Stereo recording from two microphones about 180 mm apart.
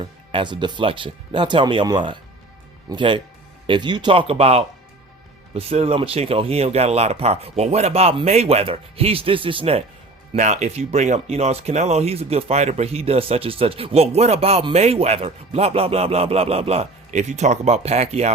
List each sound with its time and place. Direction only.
0.0 s speech: 30° right (ahead or behind)
10.3 s speech: 40° right (ahead or behind)